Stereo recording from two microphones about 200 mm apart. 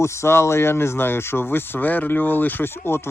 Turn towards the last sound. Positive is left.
turn(degrees=10)  # may be behind; listen again after turning